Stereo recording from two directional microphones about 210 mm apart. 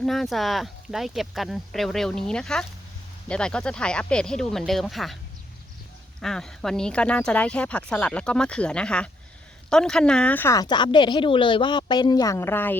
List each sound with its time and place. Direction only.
0.0 s speech: centre (ahead or behind)
6.1 s speech: 5° left (ahead or behind)